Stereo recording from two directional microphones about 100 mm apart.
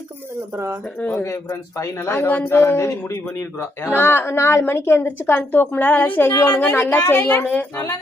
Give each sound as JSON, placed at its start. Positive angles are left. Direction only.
{"t": 1.1, "sound": "a man's voice", "side_deg": 30}
{"t": 2.2, "sound": "a woman's voice", "side_deg": 20}